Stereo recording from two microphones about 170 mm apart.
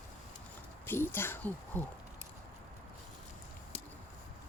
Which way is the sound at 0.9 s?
15° left (ahead or behind).